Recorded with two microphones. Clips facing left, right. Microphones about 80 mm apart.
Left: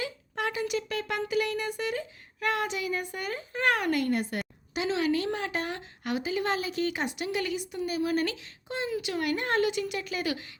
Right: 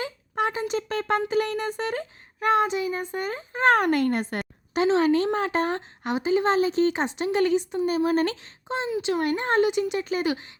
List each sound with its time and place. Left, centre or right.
0.0 s speech: right
2.4 s a child's voice: right
8.7 s speech: right